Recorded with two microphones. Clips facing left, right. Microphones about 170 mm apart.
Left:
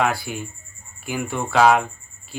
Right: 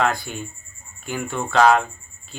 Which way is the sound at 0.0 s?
10° left (ahead or behind).